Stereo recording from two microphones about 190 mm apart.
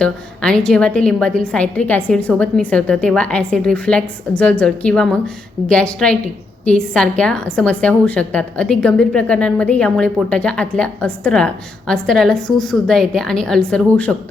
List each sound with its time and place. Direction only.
0.0 s a woman's voice: 5° left (ahead or behind)